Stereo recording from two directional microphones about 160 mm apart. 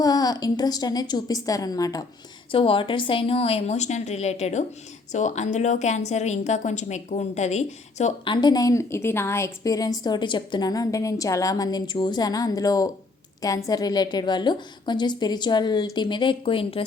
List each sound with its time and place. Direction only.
0.0 s a woman's voice: 25° left (ahead or behind)
2.5 s a woman's voice: 35° left (ahead or behind)
8.2 s a woman's voice: 30° left (ahead or behind)